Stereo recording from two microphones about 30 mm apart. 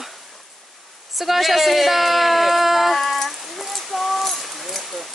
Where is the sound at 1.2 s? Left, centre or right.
Centre.